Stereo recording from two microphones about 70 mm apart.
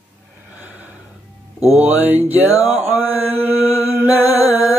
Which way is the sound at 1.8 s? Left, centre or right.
Right.